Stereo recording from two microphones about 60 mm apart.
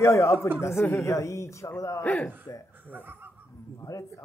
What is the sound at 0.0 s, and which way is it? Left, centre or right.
A woman's voice, left.